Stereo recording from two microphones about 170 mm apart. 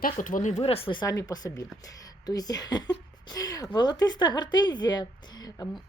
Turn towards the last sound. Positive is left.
turn(degrees=25)  # may be behind; listen again after turning